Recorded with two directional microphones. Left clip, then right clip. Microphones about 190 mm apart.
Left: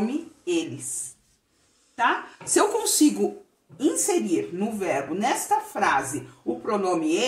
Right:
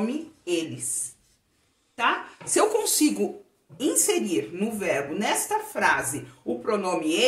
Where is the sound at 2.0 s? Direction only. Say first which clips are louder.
Left 1 dB; 20° left (ahead or behind).